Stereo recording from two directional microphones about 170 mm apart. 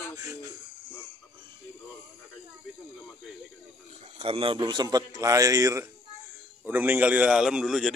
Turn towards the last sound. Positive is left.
turn(degrees=0)  # may be behind; listen again after turning